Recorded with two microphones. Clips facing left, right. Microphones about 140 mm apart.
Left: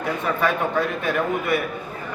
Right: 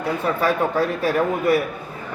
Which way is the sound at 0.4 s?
35° right (ahead or behind).